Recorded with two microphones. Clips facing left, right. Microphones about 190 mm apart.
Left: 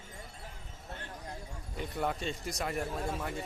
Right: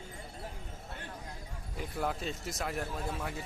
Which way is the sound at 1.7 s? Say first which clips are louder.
Left 1 dB; centre (ahead or behind).